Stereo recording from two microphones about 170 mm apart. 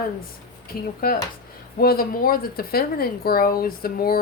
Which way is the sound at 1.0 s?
60° left (ahead or behind).